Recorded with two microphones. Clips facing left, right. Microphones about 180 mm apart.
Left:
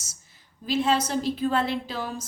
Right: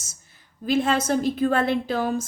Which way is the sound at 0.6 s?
50° right (ahead or behind).